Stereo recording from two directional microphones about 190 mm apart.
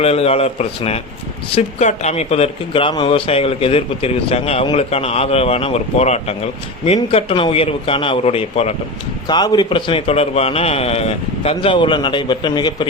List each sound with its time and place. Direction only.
0.0 s a man's voice: 30° left (ahead or behind)